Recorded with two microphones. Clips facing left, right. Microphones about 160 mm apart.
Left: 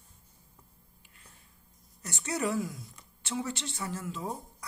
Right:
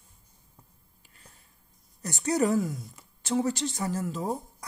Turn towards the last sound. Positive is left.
turn(degrees=-40)  # may be behind; listen again after turning